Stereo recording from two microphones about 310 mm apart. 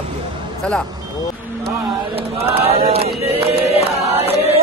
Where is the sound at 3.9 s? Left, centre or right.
Centre.